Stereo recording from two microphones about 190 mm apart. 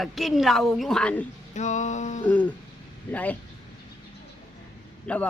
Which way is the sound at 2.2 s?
10° left (ahead or behind).